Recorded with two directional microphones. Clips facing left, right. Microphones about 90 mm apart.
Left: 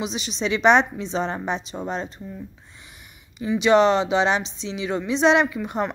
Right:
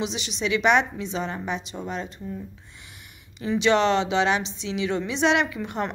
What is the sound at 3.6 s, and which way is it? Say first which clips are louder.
A woman's voice: left 4 dB; 20° left (ahead or behind).